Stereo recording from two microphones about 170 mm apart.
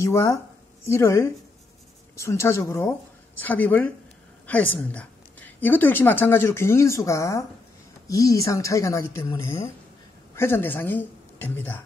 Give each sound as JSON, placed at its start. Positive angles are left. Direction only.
{"t": 0.0, "sound": "a woman's voice", "side_deg": 15}